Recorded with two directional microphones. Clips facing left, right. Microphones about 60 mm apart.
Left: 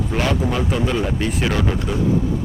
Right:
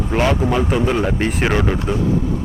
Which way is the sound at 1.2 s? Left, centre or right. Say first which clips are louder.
Right 2 dB; right.